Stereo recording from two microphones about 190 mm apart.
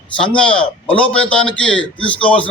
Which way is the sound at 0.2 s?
5° left (ahead or behind).